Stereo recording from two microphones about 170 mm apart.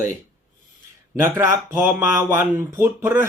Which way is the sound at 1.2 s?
15° right (ahead or behind).